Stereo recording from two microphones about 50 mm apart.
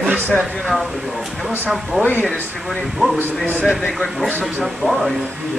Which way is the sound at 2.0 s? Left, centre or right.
Left.